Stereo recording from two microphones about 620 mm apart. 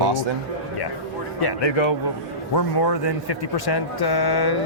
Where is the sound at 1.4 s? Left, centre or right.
Left.